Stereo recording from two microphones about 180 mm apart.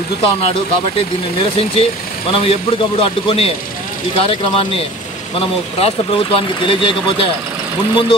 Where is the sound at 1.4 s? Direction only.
35° left (ahead or behind).